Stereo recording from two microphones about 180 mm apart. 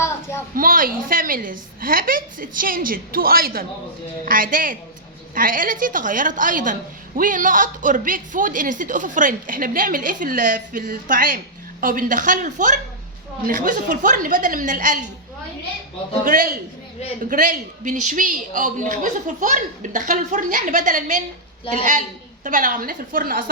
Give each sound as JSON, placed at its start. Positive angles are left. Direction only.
{"t": 0.0, "sound": "a sound", "side_deg": 15}
{"t": 0.5, "sound": "a woman's voice", "side_deg": -50}
{"t": 16.2, "sound": "a woman's voice", "side_deg": -50}